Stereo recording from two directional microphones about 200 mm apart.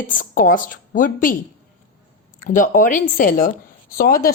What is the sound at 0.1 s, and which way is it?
A woman's voice, 40° left (ahead or behind).